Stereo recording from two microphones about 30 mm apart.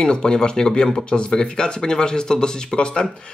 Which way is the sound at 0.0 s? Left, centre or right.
Left.